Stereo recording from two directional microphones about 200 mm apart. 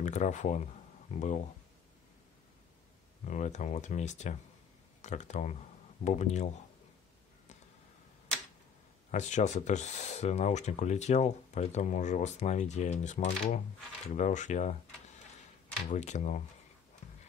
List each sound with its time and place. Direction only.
0.0 s speech: 35° left (ahead or behind)
3.3 s speech: 35° left (ahead or behind)
9.1 s speech: 35° left (ahead or behind)
15.9 s speech: 35° left (ahead or behind)